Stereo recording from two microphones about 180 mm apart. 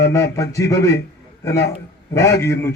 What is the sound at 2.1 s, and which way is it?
Speech, 15° left (ahead or behind).